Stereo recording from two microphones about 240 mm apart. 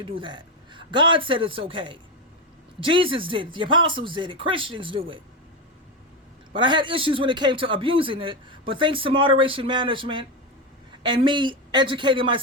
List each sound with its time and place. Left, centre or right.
0.0 s a man's voice: right
6.5 s a man's voice: centre